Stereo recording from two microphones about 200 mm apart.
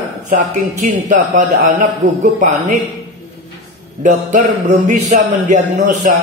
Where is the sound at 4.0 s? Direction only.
40° right (ahead or behind).